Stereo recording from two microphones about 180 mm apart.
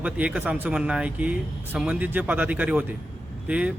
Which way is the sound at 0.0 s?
5° right (ahead or behind).